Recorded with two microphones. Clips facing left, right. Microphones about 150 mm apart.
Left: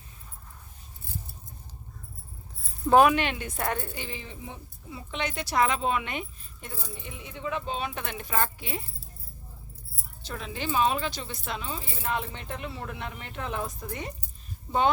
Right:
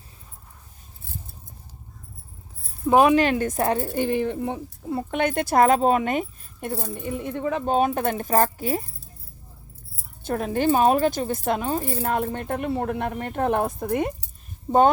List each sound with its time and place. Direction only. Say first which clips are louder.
2.8 s speech: right 2 dB; 5° right (ahead or behind)
3.2 s speech: right 9 dB; 45° right (ahead or behind)
3.6 s speech: right 5 dB; 30° right (ahead or behind)
3.9 s speech: right 16 dB; 55° right (ahead or behind)
10.2 s speech: right 12 dB; 50° right (ahead or behind)